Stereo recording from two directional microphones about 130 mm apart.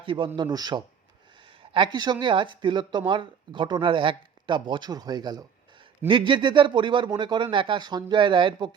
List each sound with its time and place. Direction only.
0.0 s a man's voice: 40° right (ahead or behind)